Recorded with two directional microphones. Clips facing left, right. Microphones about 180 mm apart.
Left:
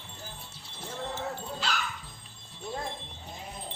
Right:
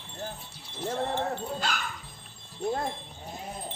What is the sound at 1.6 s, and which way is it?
Dog, 50° right (ahead or behind).